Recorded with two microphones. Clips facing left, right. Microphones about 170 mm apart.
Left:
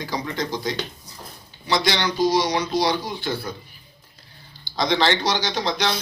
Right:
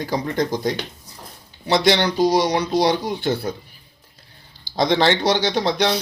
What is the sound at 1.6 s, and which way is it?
Speech, 60° right (ahead or behind).